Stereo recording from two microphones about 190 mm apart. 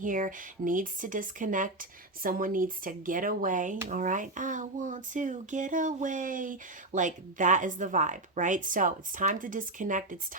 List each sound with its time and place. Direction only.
0.0 s speech: 45° right (ahead or behind)